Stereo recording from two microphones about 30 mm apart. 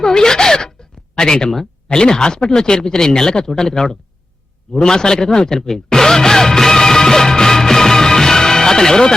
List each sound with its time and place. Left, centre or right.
0.0 s a sound: centre
1.9 s speech: left
4.7 s music: left